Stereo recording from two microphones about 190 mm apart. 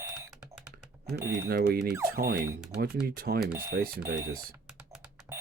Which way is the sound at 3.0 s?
50° right (ahead or behind).